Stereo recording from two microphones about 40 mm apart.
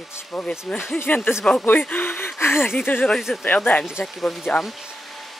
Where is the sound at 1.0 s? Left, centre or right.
Left.